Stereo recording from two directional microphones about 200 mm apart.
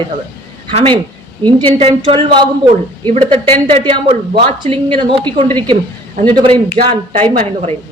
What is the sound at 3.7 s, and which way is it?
A woman's voice, 25° right (ahead or behind).